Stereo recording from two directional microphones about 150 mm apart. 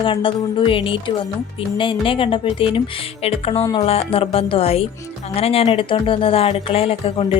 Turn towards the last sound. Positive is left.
turn(degrees=40)  # may be behind; listen again after turning